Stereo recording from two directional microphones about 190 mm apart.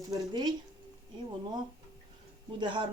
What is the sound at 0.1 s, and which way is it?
Speech, 20° right (ahead or behind).